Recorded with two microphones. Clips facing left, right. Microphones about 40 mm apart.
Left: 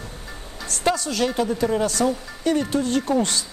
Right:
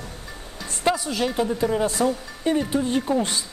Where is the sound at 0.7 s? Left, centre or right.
Left.